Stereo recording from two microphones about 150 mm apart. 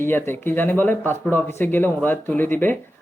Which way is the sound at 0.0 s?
15° left (ahead or behind).